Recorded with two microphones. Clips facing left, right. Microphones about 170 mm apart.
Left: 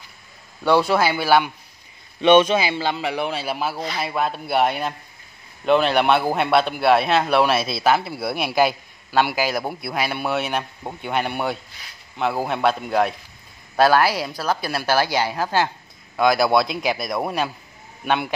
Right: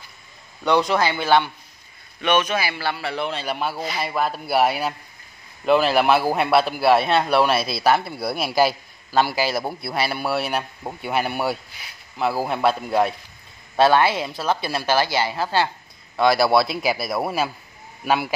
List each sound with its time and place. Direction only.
0.6 s a man's voice: 5° left (ahead or behind)
2.2 s a man's voice: 25° left (ahead or behind)
16.2 s a man's voice: centre (ahead or behind)